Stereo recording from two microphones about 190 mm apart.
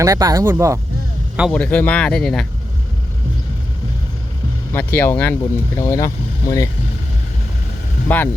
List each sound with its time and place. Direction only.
0.0 s speech: 20° right (ahead or behind)
1.4 s speech: 5° left (ahead or behind)
4.7 s speech: 10° left (ahead or behind)
8.0 s speech: 10° left (ahead or behind)